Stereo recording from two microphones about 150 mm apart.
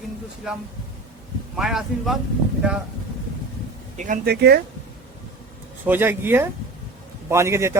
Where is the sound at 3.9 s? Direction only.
60° right (ahead or behind); by 4.6 s 90° right.